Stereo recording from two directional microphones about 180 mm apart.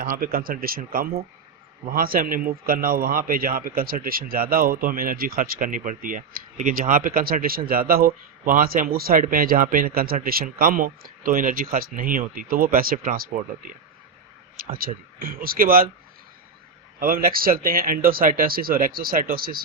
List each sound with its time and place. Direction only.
0.0 s a man's voice: 55° right (ahead or behind)
14.5 s a sound: 55° right (ahead or behind)
15.2 s a man's voice: 55° right (ahead or behind)
17.0 s a man's voice: 55° right (ahead or behind)